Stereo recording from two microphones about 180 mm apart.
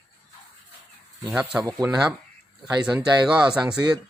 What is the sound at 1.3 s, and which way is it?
Speech, 5° right (ahead or behind).